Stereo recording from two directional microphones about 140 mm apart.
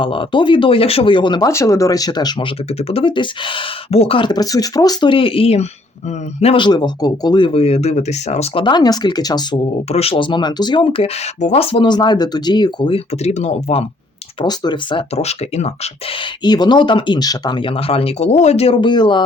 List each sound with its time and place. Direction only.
0.0 s speech: 35° left (ahead or behind)
1.5 s speech: 20° left (ahead or behind)
2.7 s speech: 45° left (ahead or behind)
8.5 s speech: 30° left (ahead or behind)
9.9 s speech: 45° left (ahead or behind)
11.3 s speech: 50° left (ahead or behind); by 13.0 s 35° left (ahead or behind)
13.2 s speech: 55° left (ahead or behind)
14.4 s speech: 30° left (ahead or behind); by 15.9 s 50° left (ahead or behind)
16.4 s speech: 30° left (ahead or behind)